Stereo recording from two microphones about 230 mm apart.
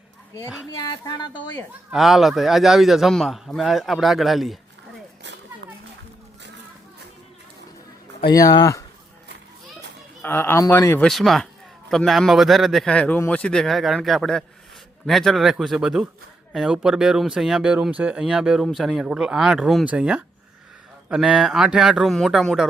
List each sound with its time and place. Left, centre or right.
0.8 s speech: centre
1.5 s speech: centre
8.3 s speech: centre
10.2 s speech: centre